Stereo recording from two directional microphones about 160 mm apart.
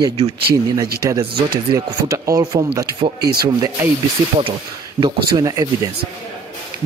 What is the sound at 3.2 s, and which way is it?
Speech, 80° right.